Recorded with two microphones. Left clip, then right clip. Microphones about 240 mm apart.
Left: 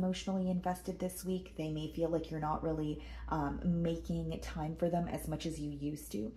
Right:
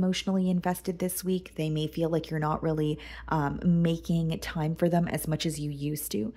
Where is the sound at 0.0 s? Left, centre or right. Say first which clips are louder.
Right 8 dB; right.